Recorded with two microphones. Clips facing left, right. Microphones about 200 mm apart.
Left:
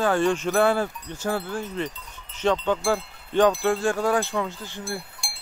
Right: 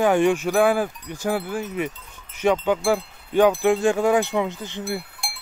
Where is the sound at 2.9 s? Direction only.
10° right (ahead or behind).